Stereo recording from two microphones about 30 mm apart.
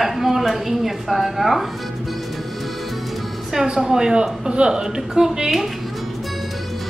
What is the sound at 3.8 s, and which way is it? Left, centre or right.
Speech, centre.